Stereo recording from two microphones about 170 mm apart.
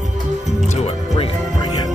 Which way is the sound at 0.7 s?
40° left (ahead or behind).